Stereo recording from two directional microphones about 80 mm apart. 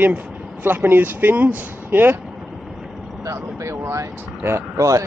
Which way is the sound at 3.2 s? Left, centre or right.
Right.